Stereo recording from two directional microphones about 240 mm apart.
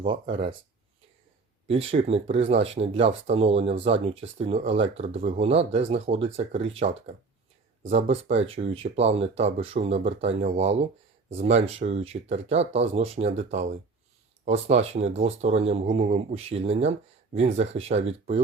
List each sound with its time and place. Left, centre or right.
0.0 s speech: right
1.6 s speech: right
14.7 s speech: right